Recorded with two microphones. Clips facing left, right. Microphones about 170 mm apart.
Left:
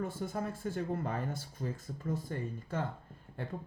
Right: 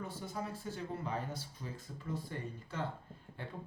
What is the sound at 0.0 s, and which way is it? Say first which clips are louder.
Speech: left 5 dB; 50° left (ahead or behind).